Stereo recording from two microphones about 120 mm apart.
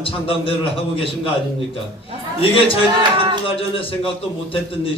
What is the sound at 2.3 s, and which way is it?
A man's voice, 50° left (ahead or behind).